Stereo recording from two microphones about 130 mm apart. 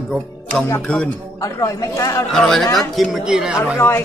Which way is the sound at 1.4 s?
25° left (ahead or behind).